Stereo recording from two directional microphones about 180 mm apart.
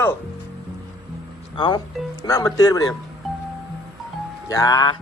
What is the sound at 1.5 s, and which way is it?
Speech, 25° left (ahead or behind).